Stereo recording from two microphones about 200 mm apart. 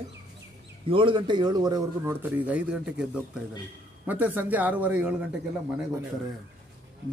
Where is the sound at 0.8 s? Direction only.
25° right (ahead or behind); by 5.9 s 5° right (ahead or behind).